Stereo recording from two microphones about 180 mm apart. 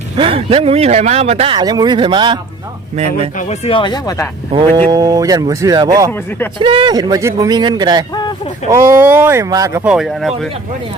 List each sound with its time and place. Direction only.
0.2 s speech: 30° right (ahead or behind)
3.3 s speech: 35° left (ahead or behind)
4.5 s speech: 30° right (ahead or behind)
8.1 s speech: 25° left (ahead or behind)
8.7 s speech: 15° right (ahead or behind)
9.8 s speech: 5° right (ahead or behind)